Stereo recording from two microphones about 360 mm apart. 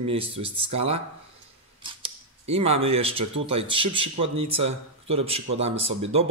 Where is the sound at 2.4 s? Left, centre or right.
Centre.